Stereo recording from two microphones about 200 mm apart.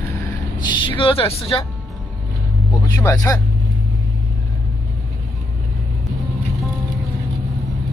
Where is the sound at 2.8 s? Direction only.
15° left (ahead or behind).